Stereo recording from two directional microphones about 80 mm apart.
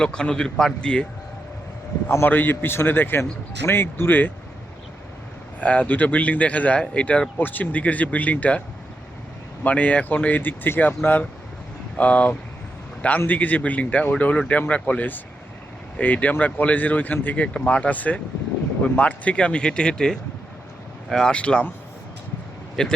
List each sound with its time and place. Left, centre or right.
0.0 s speech: centre
2.0 s speech: left
5.5 s speech: centre
9.6 s speech: centre
22.8 s speech: centre